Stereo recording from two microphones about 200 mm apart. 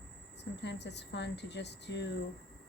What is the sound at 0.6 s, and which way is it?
A woman's voice, 60° left (ahead or behind).